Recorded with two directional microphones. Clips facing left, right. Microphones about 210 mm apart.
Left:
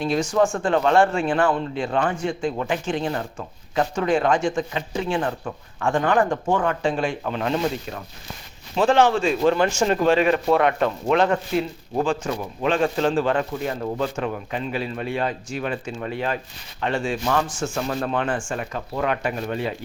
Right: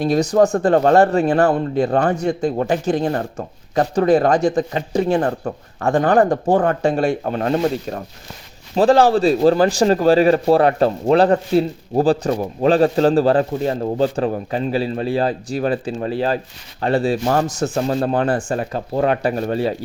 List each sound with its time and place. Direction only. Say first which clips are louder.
0.0 s speech: right 5 dB; 40° right (ahead or behind)